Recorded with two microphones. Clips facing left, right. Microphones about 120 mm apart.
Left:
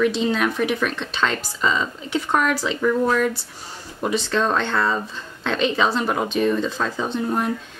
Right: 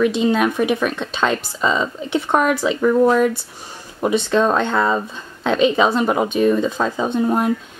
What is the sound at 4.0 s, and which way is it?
Speech, 20° right (ahead or behind).